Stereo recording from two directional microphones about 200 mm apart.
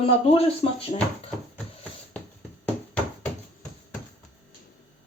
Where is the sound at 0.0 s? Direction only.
30° left (ahead or behind).